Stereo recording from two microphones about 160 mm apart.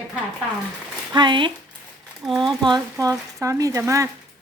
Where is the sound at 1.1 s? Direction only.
30° right (ahead or behind).